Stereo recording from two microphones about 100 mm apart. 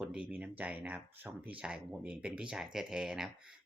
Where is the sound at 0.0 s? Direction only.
10° right (ahead or behind).